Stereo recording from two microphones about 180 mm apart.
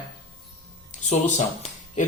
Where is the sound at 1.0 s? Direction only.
40° left (ahead or behind).